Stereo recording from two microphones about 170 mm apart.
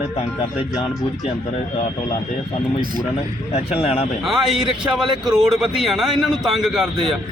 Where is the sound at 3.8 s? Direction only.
35° left (ahead or behind).